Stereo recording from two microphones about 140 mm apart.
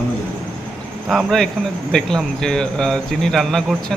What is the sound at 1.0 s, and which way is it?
Speech, centre (ahead or behind).